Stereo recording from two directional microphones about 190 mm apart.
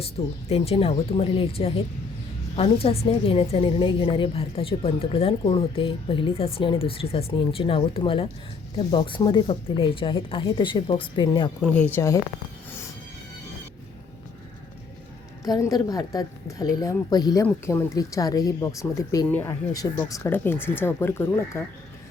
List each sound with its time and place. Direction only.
0.0 s a woman's voice: 30° left (ahead or behind)
11.6 s speech: 5° left (ahead or behind)
15.4 s a woman's voice: 20° left (ahead or behind)